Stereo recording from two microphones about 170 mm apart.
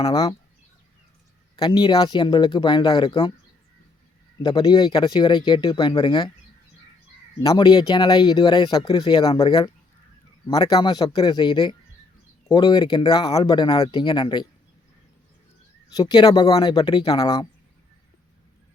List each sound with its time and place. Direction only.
0.0 s speech: 25° left (ahead or behind)
1.5 s speech: 25° left (ahead or behind)
4.4 s speech: 25° left (ahead or behind)
7.4 s speech: 25° left (ahead or behind)
16.0 s speech: 25° left (ahead or behind)